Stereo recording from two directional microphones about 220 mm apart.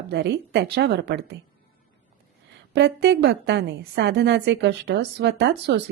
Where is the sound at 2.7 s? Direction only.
50° right (ahead or behind).